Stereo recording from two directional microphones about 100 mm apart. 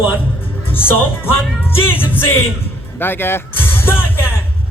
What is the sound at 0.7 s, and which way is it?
Speech, 20° left (ahead or behind).